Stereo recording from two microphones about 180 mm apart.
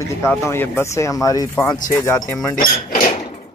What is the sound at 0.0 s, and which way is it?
Speech, 15° left (ahead or behind).